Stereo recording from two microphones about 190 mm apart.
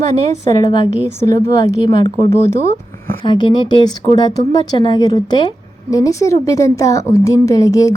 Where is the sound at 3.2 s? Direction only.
25° left (ahead or behind).